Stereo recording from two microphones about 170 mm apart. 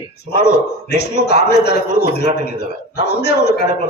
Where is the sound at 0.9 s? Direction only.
75° left (ahead or behind).